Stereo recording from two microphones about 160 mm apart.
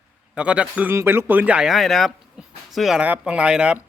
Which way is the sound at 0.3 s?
5° right (ahead or behind).